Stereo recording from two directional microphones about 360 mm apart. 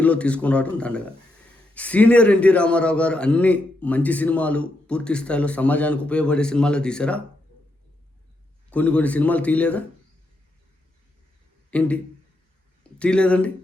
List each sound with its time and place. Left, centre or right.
0.0 s a man's voice: centre
8.7 s a man's voice: centre
11.7 s a man's voice: centre
13.0 s a man's voice: centre